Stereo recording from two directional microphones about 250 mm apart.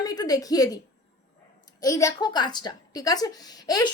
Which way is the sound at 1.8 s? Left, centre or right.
Centre.